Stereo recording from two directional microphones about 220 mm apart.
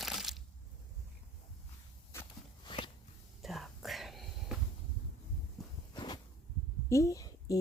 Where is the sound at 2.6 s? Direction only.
20° left (ahead or behind).